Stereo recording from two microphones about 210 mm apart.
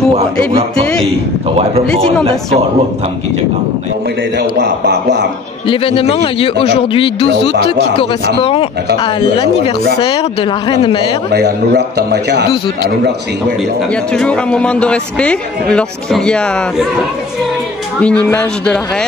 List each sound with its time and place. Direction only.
1.6 s speech: 30° right (ahead or behind)
4.4 s a man's voice: 55° right (ahead or behind)
5.7 s a man's voice: 25° left (ahead or behind)
10.0 s a man's voice: 25° left (ahead or behind)
11.3 s a man's voice: 55° right (ahead or behind)
14.1 s a man's voice: centre (ahead or behind)
18.0 s a man's voice: 5° left (ahead or behind)